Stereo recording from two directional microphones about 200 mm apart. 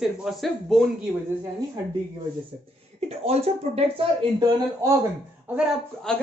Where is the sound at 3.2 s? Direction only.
30° right (ahead or behind).